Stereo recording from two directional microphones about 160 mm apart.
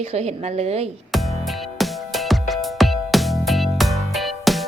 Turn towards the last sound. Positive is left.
turn(degrees=0)  # may be behind; listen again after turning